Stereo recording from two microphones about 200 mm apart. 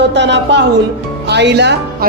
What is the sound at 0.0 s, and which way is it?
A man's voice, 60° right (ahead or behind).